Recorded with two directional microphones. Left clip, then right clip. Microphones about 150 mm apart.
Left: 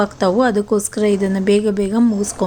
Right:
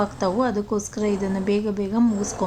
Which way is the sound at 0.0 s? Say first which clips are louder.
Left 7 dB; 20° left (ahead or behind).